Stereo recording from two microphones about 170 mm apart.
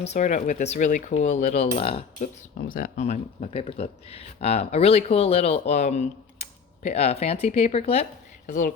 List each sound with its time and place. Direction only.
0.0 s speech: 45° left (ahead or behind)
2.6 s speech: 55° left (ahead or behind); by 8.0 s 40° left (ahead or behind)
8.4 s speech: 50° left (ahead or behind)